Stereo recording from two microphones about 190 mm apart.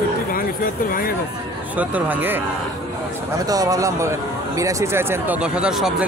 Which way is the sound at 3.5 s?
20° right (ahead or behind).